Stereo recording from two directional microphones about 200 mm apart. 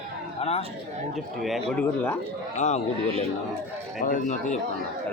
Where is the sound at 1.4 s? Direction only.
Centre (ahead or behind).